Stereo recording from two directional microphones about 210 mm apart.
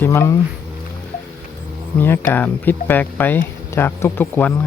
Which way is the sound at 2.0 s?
10° left (ahead or behind).